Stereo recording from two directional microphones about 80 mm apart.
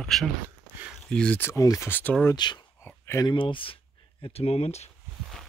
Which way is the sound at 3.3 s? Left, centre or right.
Left.